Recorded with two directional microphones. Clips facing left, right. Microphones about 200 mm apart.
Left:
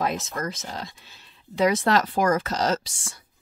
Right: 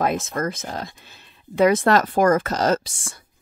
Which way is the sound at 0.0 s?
50° right (ahead or behind).